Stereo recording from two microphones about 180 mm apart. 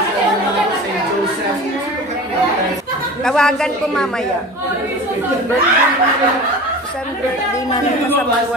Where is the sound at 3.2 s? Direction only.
5° left (ahead or behind).